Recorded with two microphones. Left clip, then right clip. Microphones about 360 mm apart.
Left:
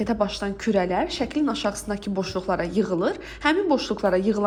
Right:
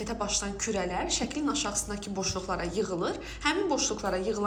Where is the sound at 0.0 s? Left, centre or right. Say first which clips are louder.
Left 7 dB; centre.